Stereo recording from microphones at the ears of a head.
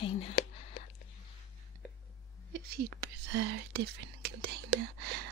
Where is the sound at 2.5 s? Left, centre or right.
Right.